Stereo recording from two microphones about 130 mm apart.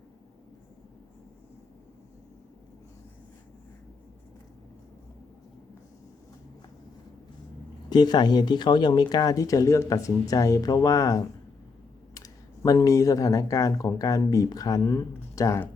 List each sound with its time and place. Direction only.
7.9 s speech: 35° left (ahead or behind)